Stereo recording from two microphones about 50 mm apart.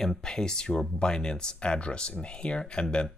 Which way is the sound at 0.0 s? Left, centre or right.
Centre.